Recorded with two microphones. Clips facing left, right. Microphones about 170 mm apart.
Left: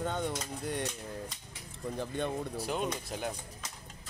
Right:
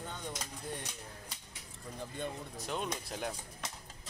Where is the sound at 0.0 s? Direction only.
70° left (ahead or behind).